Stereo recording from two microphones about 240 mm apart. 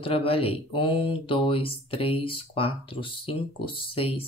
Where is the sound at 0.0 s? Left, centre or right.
Left.